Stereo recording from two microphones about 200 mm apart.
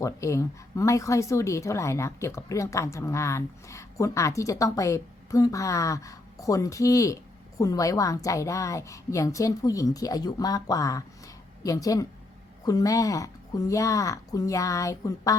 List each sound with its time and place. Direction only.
0.0 s a woman's voice: 15° left (ahead or behind)